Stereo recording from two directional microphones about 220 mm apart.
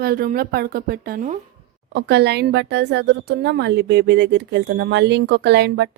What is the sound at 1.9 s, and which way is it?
Speech, 50° right (ahead or behind).